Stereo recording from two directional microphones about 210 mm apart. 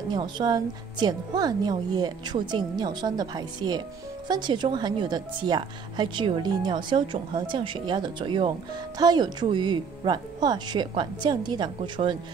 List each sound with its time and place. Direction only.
0.1 s a woman's voice: 20° right (ahead or behind)